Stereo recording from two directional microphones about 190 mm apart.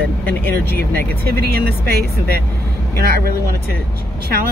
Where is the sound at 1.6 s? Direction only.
55° right (ahead or behind).